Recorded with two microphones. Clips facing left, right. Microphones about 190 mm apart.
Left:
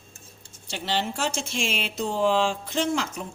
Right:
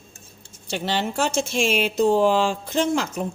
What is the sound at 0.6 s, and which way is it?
Speech, 50° right (ahead or behind).